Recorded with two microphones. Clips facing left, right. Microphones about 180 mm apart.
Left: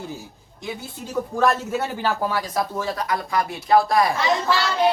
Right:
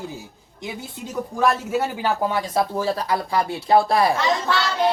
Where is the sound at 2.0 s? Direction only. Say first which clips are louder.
Right 1 dB; 20° right (ahead or behind).